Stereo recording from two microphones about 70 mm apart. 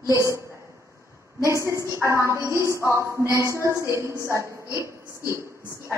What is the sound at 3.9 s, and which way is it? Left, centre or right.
Speech, right.